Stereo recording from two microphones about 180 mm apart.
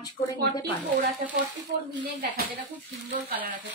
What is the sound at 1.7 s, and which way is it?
Speech, 75° right (ahead or behind).